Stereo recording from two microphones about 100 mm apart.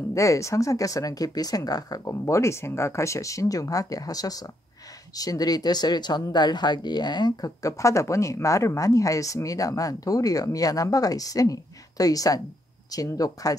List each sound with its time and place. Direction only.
0.1 s speech: 30° left (ahead or behind)